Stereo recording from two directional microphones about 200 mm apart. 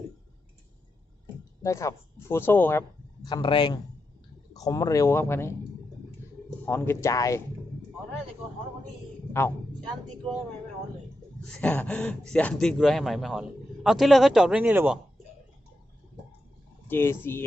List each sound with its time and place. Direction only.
1.6 s speech: 15° left (ahead or behind)
3.2 s a man's voice: 20° left (ahead or behind)
6.7 s speech: 10° left (ahead or behind)
11.6 s speech: 5° left (ahead or behind)
16.9 s speech: 10° left (ahead or behind)